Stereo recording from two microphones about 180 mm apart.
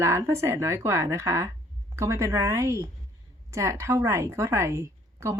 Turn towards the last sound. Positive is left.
turn(degrees=-15)  # may be behind; listen again after turning